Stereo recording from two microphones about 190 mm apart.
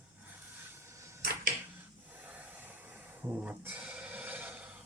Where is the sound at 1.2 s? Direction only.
50° right (ahead or behind).